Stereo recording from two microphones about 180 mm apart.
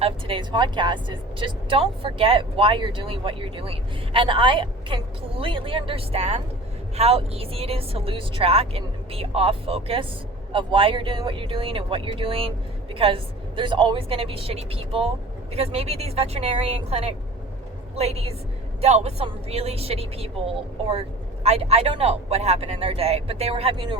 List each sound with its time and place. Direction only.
0.0 s speech: 30° right (ahead or behind)
21.4 s speech: 35° right (ahead or behind)